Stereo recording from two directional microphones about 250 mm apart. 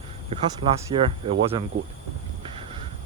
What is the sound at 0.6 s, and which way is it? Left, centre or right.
Speech, right.